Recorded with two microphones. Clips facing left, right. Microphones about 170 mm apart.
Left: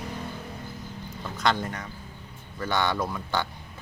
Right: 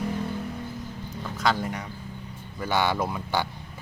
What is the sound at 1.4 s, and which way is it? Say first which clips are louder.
Speech: even; 5° right (ahead or behind).